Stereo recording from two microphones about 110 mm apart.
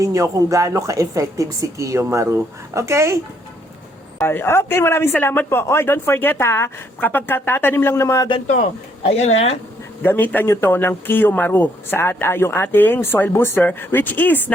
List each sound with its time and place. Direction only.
0.0 s speech: 30° right (ahead or behind)
4.2 s speech: 20° left (ahead or behind)
9.0 s speech: 70° left (ahead or behind)
10.0 s speech: 20° left (ahead or behind)